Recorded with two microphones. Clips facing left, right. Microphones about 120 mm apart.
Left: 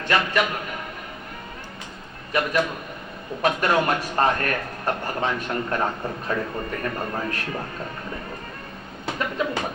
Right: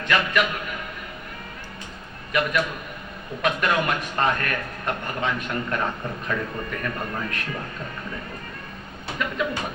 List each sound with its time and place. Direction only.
0.1 s a man's voice: 30° left (ahead or behind)
2.3 s a man's voice: 35° left (ahead or behind)
9.4 s a man's voice: 35° left (ahead or behind)